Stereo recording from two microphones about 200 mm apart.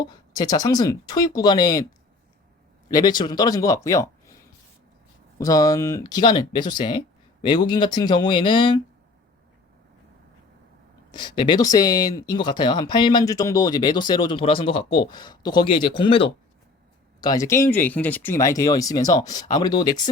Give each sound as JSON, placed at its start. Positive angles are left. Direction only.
{"t": 0.0, "sound": "speech", "side_deg": 20}
{"t": 2.9, "sound": "speech", "side_deg": 20}
{"t": 5.4, "sound": "speech", "side_deg": 15}
{"t": 11.1, "sound": "speech", "side_deg": 20}